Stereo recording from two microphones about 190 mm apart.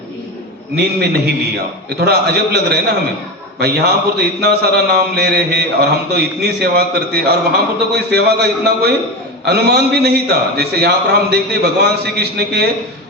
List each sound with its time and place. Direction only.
0.8 s a man's voice: 60° right (ahead or behind)